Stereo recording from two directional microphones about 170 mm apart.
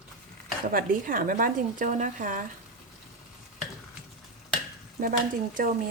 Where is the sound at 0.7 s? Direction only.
55° right (ahead or behind).